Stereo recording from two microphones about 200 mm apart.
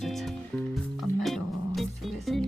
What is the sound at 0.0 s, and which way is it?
Music, centre (ahead or behind).